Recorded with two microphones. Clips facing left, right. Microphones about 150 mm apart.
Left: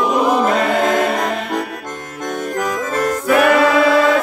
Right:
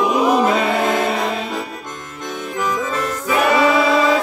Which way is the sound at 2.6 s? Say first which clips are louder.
Left 1 dB; 50° left (ahead or behind).